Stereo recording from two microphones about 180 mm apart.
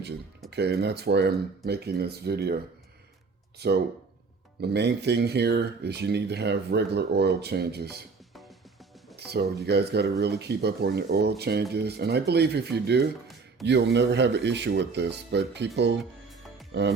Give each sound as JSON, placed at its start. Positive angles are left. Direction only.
{"t": 0.5, "sound": "speech", "side_deg": -65}
{"t": 3.6, "sound": "speech", "side_deg": -65}
{"t": 8.3, "sound": "music", "side_deg": 0}
{"t": 9.1, "sound": "speech", "side_deg": -65}
{"t": 16.0, "sound": "music", "side_deg": 0}